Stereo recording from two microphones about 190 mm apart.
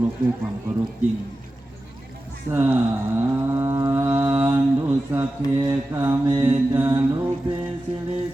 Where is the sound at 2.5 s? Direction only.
10° right (ahead or behind).